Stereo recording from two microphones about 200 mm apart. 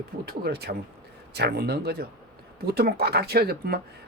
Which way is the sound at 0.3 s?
55° right (ahead or behind).